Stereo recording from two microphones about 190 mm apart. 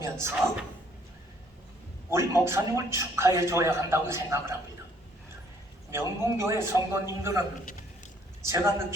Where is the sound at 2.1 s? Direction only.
15° right (ahead or behind).